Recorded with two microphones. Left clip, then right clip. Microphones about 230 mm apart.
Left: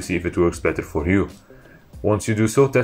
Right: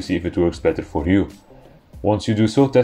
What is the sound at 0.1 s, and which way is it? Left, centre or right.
Speech, centre.